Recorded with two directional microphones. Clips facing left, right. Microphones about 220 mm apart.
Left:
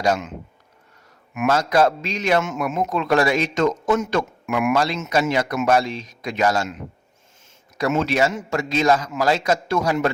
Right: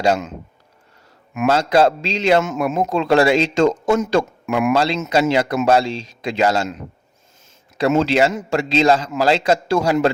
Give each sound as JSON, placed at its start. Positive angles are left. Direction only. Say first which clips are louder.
{"t": 0.0, "sound": "a man's voice", "louder": "right 3 dB", "side_deg": -30}
{"t": 1.3, "sound": "a man's voice", "louder": "right 3 dB", "side_deg": -30}
{"t": 7.8, "sound": "a man's voice", "louder": "right 4 dB", "side_deg": -30}